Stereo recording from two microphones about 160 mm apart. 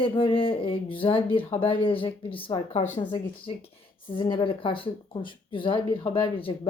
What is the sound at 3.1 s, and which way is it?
Speech, 30° left (ahead or behind).